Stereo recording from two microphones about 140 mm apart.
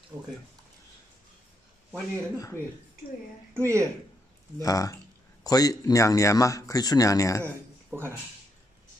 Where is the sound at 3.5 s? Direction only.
20° right (ahead or behind).